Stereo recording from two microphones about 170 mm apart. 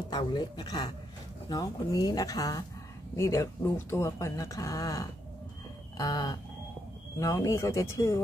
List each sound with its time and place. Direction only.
0.1 s speech: 25° left (ahead or behind)